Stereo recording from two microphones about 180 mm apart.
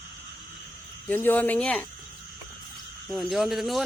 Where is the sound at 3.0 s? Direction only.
Centre (ahead or behind).